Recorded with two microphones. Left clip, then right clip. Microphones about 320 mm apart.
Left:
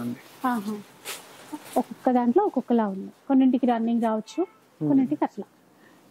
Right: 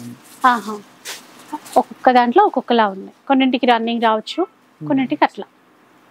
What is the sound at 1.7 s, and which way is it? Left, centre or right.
A woman's voice, centre.